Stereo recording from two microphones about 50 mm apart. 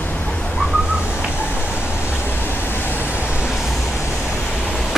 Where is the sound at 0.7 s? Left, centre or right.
Right.